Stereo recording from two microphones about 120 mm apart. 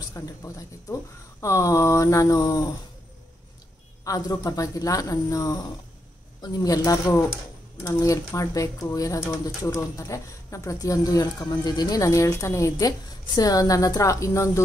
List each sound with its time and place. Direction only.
0.1 s speech: 25° left (ahead or behind)
4.0 s speech: 30° left (ahead or behind)